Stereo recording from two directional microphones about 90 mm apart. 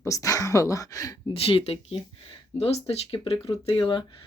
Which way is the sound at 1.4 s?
90° left.